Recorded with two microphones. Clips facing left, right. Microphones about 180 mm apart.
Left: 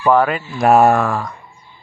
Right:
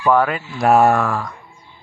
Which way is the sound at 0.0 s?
30° left (ahead or behind).